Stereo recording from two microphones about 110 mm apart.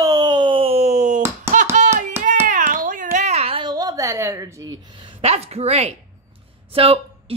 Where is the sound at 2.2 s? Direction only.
20° right (ahead or behind).